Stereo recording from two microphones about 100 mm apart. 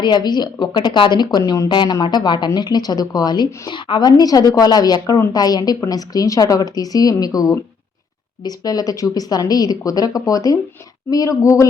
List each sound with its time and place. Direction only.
0.0 s a woman's voice: 45° left (ahead or behind)